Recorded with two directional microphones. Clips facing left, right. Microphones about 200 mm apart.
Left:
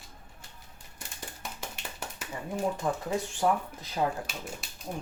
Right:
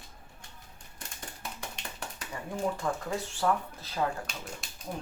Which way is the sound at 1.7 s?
5° left (ahead or behind).